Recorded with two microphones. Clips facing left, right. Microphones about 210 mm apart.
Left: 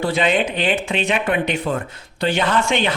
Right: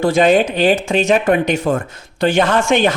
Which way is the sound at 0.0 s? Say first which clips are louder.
Right 6 dB; 45° right (ahead or behind).